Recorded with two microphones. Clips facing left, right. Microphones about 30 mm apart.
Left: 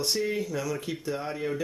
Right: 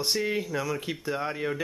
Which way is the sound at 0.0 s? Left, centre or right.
Centre.